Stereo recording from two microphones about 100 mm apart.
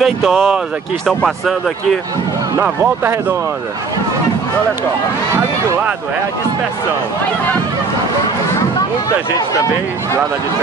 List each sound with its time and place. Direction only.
0.0 s speech: 5° right (ahead or behind)
2.6 s speech: 20° right (ahead or behind)